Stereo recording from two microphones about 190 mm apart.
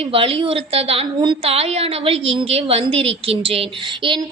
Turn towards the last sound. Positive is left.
turn(degrees=-30)  # may be behind; listen again after turning